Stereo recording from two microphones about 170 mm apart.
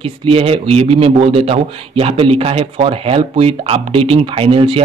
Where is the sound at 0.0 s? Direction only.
35° right (ahead or behind).